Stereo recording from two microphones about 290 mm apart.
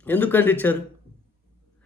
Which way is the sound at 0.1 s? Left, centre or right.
Centre.